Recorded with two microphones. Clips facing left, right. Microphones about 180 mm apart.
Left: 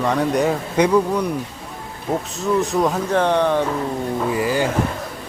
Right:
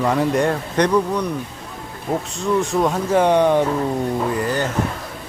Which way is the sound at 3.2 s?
15° right (ahead or behind).